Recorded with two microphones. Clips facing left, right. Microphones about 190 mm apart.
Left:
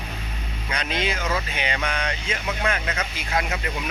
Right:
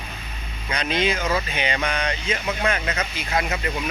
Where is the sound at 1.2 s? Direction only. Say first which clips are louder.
Right 3 dB; 10° right (ahead or behind).